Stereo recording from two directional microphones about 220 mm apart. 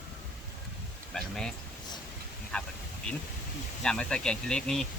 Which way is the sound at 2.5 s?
5° left (ahead or behind).